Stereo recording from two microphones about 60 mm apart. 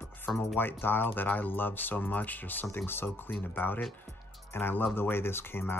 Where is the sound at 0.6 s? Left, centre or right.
Left.